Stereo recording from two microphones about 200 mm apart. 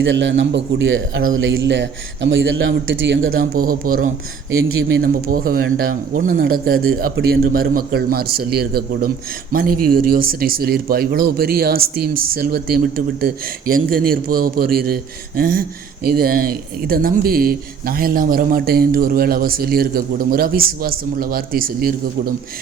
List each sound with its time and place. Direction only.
0.0 s a man's voice: 65° right (ahead or behind)
3.3 s speech: 45° right (ahead or behind)
4.5 s speech: 90° right
5.3 s speech: 45° right (ahead or behind)